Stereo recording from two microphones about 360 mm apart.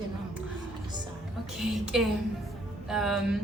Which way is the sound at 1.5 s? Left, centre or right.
Centre.